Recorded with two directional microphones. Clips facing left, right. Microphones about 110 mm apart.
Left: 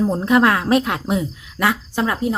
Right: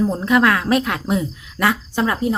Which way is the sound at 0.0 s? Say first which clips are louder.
Left 1 dB; 25° left (ahead or behind).